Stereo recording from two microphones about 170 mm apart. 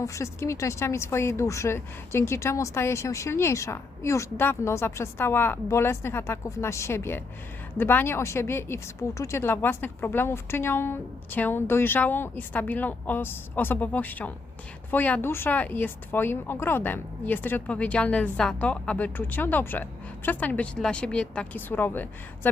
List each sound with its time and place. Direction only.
0.0 s a woman's voice: 15° left (ahead or behind)